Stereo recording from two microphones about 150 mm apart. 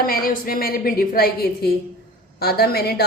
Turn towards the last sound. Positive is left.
turn(degrees=90)